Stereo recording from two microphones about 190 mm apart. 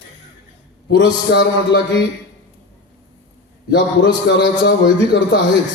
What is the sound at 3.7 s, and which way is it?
A man's voice, 70° left (ahead or behind).